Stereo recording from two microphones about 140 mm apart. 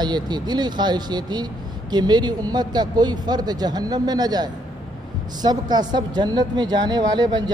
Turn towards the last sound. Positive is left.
turn(degrees=-30)  # may be behind; listen again after turning